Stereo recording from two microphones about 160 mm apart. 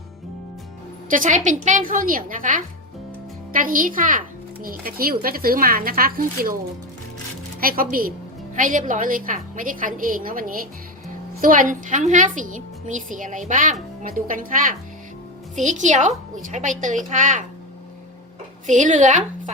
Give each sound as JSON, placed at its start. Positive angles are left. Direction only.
{"t": 1.1, "sound": "a woman's voice", "side_deg": -55}
{"t": 7.6, "sound": "a woman's voice", "side_deg": -65}
{"t": 18.6, "sound": "a woman's voice", "side_deg": -50}